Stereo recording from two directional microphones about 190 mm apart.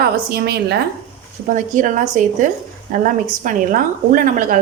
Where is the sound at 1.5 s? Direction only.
45° right (ahead or behind).